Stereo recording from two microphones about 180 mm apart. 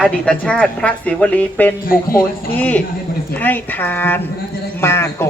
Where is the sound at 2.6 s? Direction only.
10° left (ahead or behind).